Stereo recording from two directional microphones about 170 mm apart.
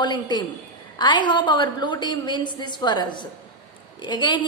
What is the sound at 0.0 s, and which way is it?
A woman's voice, 25° left (ahead or behind).